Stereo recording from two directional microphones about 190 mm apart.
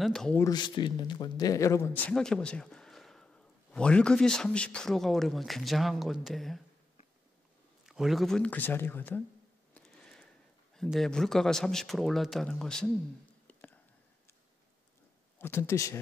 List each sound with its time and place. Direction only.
0.0 s speech: centre (ahead or behind)
0.4 s a man's voice: 20° left (ahead or behind)
2.1 s speech: 5° left (ahead or behind)
7.8 s speech: centre (ahead or behind)
9.8 s a sound: 5° left (ahead or behind)
10.8 s speech: centre (ahead or behind)
13.5 s whispering: 10° left (ahead or behind)
15.3 s speech: 10° left (ahead or behind)